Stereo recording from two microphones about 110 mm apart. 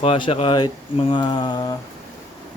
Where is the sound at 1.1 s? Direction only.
45° left (ahead or behind).